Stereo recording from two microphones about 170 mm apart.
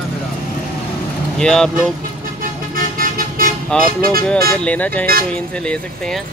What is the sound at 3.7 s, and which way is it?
Speech, 5° left (ahead or behind).